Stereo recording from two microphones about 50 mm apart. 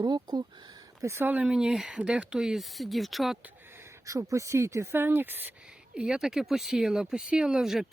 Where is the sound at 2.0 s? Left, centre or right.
Right.